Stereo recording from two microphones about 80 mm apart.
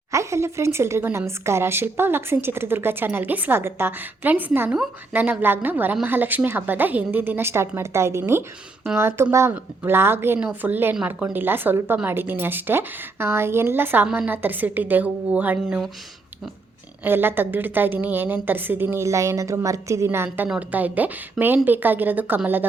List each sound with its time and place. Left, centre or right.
0.1 s a woman's voice: right; by 15.9 s centre
17.0 s a woman's voice: right